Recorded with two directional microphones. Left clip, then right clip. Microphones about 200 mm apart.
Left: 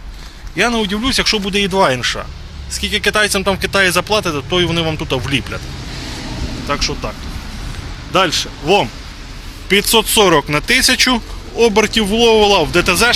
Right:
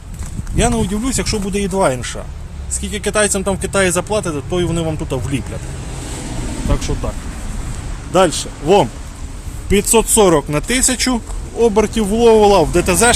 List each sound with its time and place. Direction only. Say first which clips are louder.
0.5 s speech: left 2 dB; 5° right (ahead or behind)
6.7 s speech: left 6 dB; 15° right (ahead or behind)
8.1 s a man's voice: even; 25° right (ahead or behind)
9.6 s speech: left 1 dB; 5° right (ahead or behind)
10.7 s speech: left 8 dB; 15° right (ahead or behind)